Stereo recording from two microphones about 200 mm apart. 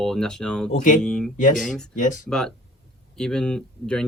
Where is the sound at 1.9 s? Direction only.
40° left (ahead or behind).